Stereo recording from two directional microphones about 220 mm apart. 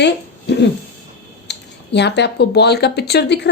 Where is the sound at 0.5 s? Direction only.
50° left (ahead or behind).